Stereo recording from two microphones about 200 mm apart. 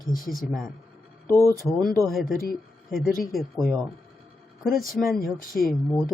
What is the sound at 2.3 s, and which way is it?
Speech, 45° left (ahead or behind).